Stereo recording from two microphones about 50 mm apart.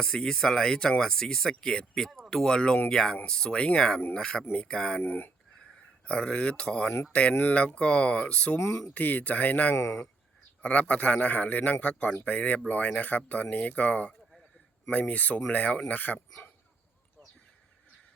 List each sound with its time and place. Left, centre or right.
0.0 s a man's voice: centre
5.0 s speech: left
5.7 s a man's voice: left
8.5 s speech: left
8.9 s speech: left
9.7 s speech: left
10.7 s a man's voice: left